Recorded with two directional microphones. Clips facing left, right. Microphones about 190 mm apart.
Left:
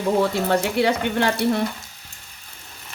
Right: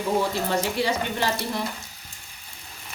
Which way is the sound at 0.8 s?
60° left (ahead or behind).